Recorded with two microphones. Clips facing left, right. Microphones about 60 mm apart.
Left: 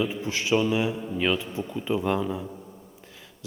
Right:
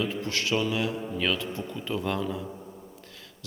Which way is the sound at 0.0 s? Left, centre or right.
Centre.